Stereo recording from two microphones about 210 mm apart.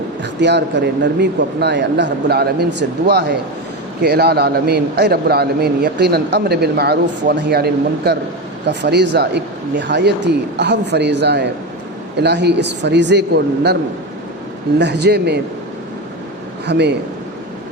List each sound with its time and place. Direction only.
0.3 s a man's voice: 55° right (ahead or behind)
14.8 s a man's voice: 55° right (ahead or behind)
16.6 s a man's voice: 55° right (ahead or behind)